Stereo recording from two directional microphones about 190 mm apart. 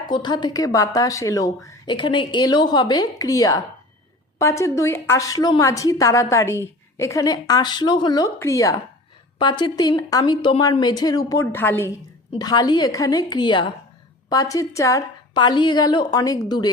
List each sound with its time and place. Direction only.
0.1 s a woman's voice: 25° left (ahead or behind)